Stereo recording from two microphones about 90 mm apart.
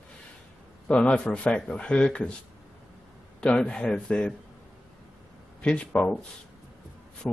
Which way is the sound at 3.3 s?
10° left (ahead or behind).